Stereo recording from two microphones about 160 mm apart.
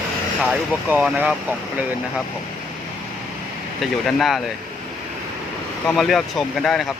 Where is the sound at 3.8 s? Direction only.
Centre (ahead or behind).